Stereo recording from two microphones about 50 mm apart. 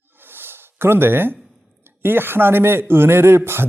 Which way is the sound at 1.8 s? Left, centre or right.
Right.